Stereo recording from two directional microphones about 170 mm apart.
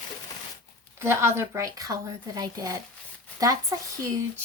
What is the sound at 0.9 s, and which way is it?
A woman's voice, 15° right (ahead or behind).